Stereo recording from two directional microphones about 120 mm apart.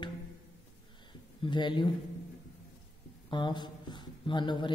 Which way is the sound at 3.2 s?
40° left (ahead or behind).